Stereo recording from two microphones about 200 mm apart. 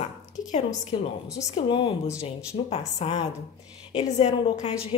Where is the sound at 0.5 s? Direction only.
35° left (ahead or behind).